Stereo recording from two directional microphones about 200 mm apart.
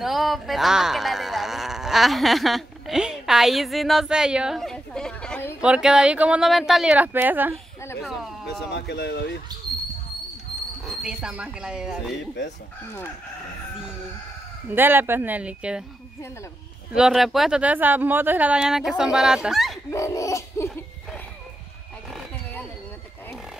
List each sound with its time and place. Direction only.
0.0 s a sound: centre (ahead or behind)
5.6 s speech: 5° right (ahead or behind)
8.7 s speech: 55° left (ahead or behind)
10.9 s speech: 5° right (ahead or behind)
14.7 s speech: 10° right (ahead or behind)
16.9 s speech: centre (ahead or behind)
19.9 s laughter: 15° left (ahead or behind)
22.1 s wild animals: 5° left (ahead or behind)